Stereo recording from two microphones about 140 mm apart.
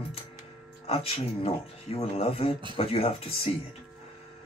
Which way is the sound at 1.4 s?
45° left (ahead or behind).